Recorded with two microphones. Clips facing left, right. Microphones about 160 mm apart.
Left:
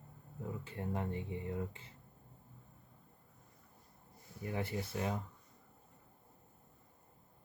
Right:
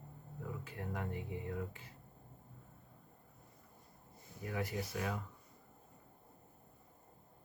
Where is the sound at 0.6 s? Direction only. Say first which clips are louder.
Left 4 dB; 25° left (ahead or behind).